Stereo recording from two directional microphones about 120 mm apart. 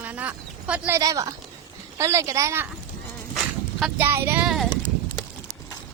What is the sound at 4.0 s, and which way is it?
Speech, 20° right (ahead or behind).